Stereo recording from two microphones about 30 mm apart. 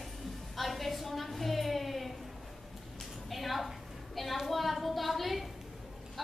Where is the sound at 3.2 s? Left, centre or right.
Centre.